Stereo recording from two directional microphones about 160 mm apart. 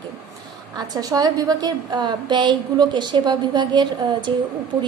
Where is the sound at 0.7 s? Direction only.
25° right (ahead or behind).